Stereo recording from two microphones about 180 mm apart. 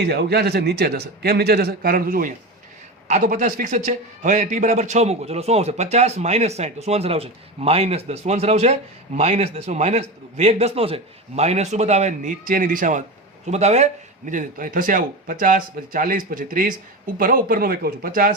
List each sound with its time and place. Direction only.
0.0 s a man's voice: 65° right (ahead or behind)